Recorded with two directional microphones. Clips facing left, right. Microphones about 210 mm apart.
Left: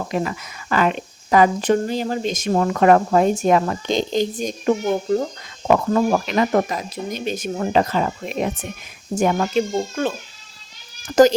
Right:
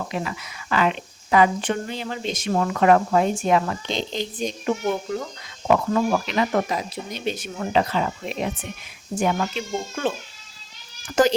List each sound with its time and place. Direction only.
0.1 s speech: 45° left (ahead or behind)